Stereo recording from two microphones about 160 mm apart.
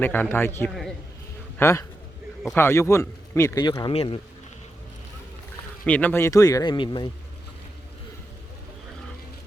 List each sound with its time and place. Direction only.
0.0 s a man's voice: 10° left (ahead or behind)
0.7 s a man's voice: centre (ahead or behind)
1.5 s a man's voice: 20° left (ahead or behind); by 4.2 s 35° left (ahead or behind)
5.8 s a man's voice: 10° left (ahead or behind); by 7.1 s 30° left (ahead or behind)